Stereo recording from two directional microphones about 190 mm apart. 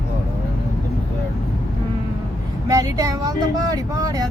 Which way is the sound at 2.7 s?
15° right (ahead or behind).